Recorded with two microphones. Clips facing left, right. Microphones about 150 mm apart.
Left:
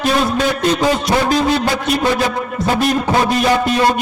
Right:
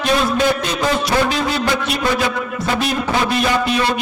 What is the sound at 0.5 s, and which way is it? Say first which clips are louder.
A man's voice: left 4 dB; 45° left (ahead or behind).